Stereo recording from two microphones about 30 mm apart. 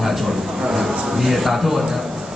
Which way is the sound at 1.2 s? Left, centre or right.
Centre.